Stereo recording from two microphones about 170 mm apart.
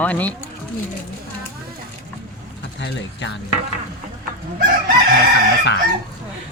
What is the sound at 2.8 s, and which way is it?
Speech, 90° left.